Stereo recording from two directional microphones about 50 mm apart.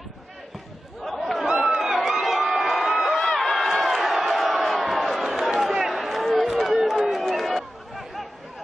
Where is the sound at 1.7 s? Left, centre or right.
Centre.